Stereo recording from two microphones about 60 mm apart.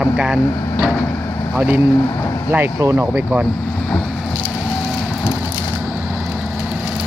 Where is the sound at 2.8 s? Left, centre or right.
Right.